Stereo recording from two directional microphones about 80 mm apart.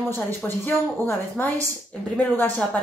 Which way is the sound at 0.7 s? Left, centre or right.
Left.